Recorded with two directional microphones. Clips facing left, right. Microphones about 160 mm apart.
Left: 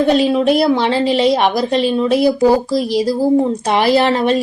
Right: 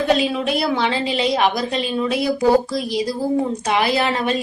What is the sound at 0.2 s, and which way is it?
A woman's voice, 35° left (ahead or behind).